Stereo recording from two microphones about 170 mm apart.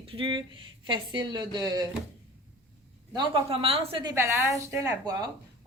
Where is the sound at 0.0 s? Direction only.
30° right (ahead or behind).